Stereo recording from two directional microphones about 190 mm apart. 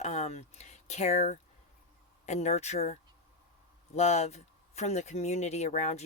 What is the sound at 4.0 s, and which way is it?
Speech, 35° left (ahead or behind).